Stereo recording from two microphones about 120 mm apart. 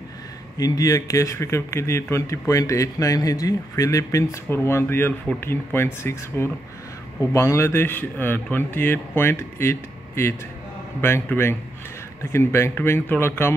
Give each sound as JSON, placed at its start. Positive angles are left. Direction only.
{"t": 0.6, "sound": "speech", "side_deg": 30}